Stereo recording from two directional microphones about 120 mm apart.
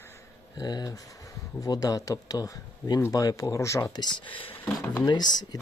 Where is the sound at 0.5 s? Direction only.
35° left (ahead or behind).